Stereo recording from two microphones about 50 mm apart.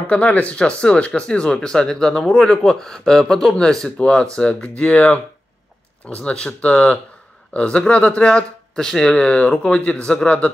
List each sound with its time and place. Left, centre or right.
0.1 s speech: left
4.9 s speech: left; by 9.1 s centre
9.1 s speech: left